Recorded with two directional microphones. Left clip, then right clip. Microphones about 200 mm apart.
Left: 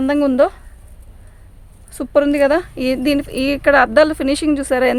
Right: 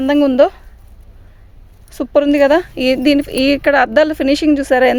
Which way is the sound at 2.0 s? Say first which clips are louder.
Right 2 dB; 30° right (ahead or behind).